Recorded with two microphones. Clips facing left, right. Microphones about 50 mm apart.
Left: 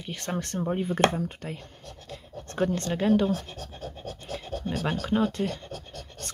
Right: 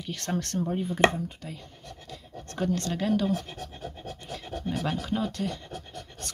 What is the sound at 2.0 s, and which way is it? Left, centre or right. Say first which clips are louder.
Scratch: left 3 dB; left.